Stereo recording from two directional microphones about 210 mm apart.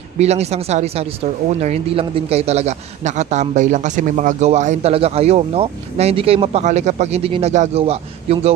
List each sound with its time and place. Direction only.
0.2 s a man's voice: 30° right (ahead or behind)